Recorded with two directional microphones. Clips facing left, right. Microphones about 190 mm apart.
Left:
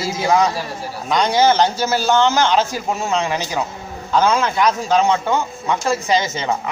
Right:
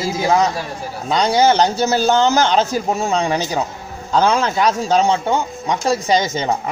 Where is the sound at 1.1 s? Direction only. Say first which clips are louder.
Right 1 dB; 30° right (ahead or behind).